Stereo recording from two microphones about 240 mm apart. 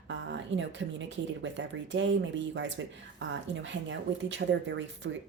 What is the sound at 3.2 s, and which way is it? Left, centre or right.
Speech, right.